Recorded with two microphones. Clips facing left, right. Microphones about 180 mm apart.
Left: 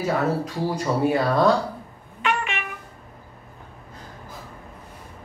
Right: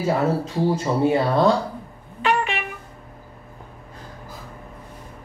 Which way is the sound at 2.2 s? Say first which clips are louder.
Right 4 dB; 35° right (ahead or behind).